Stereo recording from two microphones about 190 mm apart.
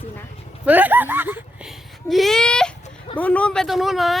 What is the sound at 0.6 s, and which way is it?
Speech, 10° right (ahead or behind).